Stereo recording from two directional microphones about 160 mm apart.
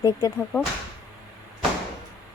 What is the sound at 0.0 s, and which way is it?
Speech, 20° left (ahead or behind).